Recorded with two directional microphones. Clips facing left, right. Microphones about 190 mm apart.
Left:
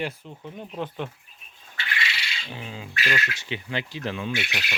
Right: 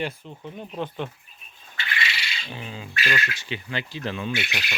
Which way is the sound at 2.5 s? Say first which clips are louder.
Even; 5° left (ahead or behind).